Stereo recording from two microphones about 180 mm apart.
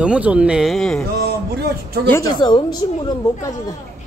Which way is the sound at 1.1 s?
65° right (ahead or behind).